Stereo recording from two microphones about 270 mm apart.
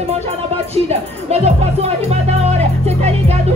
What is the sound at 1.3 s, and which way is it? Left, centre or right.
Music, right.